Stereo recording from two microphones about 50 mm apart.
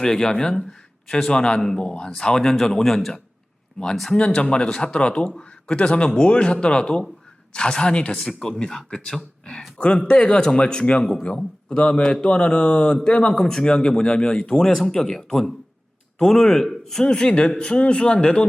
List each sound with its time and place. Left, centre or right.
0.0 s speech: centre
4.4 s a man's voice: centre
17.1 s a man's voice: centre